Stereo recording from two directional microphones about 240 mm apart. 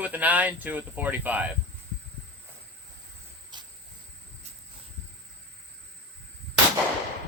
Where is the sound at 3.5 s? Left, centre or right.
Centre.